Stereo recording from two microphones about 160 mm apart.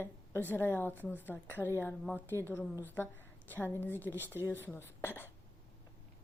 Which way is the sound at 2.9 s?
15° left (ahead or behind).